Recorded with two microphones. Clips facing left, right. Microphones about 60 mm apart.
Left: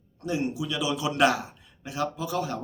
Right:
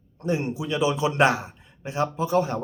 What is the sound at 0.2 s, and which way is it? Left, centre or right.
Speech, right.